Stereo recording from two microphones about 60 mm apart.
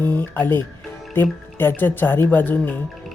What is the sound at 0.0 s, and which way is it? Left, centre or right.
Speech, left.